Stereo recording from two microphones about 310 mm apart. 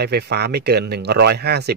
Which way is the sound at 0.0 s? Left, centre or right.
Right.